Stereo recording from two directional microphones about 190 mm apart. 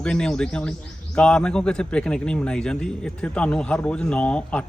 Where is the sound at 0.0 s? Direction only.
5° left (ahead or behind).